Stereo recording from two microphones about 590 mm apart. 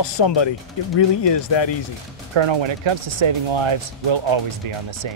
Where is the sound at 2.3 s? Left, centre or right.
Right.